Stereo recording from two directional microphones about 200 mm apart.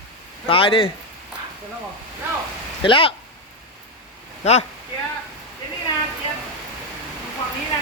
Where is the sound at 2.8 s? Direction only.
25° left (ahead or behind).